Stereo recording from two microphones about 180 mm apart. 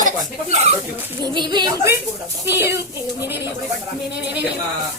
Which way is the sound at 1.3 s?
25° right (ahead or behind).